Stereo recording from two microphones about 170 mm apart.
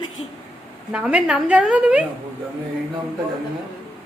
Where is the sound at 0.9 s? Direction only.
5° right (ahead or behind).